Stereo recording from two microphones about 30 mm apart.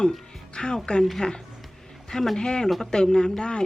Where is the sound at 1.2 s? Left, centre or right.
Left.